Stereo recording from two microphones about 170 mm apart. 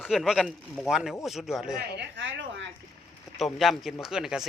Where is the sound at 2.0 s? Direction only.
90° right.